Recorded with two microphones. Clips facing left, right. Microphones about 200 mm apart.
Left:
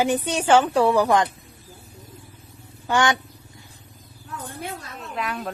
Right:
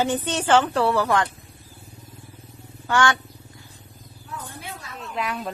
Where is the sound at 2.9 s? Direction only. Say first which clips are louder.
Even; 20° left (ahead or behind).